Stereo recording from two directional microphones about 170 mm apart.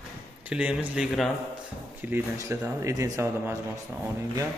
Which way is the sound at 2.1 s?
15° right (ahead or behind).